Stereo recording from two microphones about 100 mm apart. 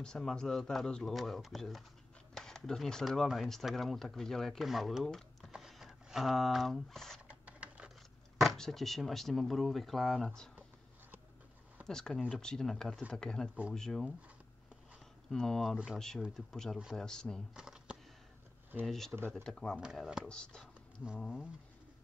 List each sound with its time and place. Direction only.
0.0 s speech: 5° left (ahead or behind)
7.2 s a sound: 15° right (ahead or behind)
8.4 s speech: centre (ahead or behind)
11.9 s speech: 5° left (ahead or behind)
15.2 s speech: 5° left (ahead or behind)
17.0 s speech: 5° left (ahead or behind)
17.6 s shuffling cards: 10° right (ahead or behind)
18.9 s speech: 5° left (ahead or behind)
19.8 s speech: 5° right (ahead or behind)
20.2 s speech: 10° left (ahead or behind)